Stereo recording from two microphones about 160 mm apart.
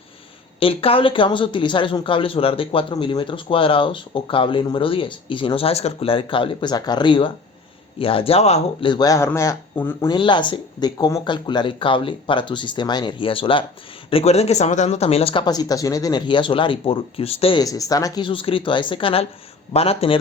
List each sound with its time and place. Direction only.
0.6 s speech: 35° left (ahead or behind)
8.9 s speech: 25° left (ahead or behind)
10.1 s speech: 30° left (ahead or behind)
17.6 s speech: 20° left (ahead or behind); by 20.1 s 40° left (ahead or behind)